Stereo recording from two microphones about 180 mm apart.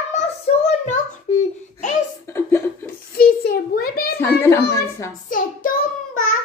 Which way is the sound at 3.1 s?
60° left (ahead or behind).